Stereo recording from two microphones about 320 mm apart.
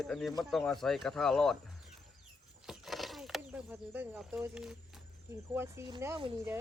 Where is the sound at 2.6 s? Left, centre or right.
Centre.